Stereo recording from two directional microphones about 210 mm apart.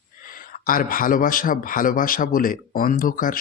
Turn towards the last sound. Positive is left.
turn(degrees=40)  # may be behind; listen again after turning